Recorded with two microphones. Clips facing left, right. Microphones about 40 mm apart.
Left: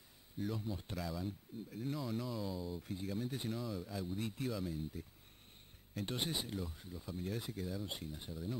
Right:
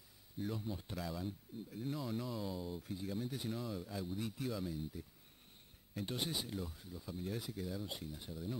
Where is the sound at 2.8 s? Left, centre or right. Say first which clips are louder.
Left 1 dB; centre.